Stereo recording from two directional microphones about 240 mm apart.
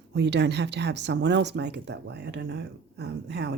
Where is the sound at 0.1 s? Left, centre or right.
Right.